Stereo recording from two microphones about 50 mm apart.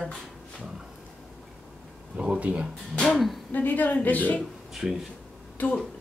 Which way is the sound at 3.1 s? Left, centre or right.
Centre.